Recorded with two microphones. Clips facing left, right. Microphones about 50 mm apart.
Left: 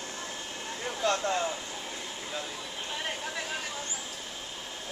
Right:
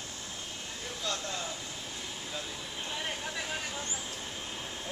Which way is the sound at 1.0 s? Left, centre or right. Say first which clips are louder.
Left 9 dB; left.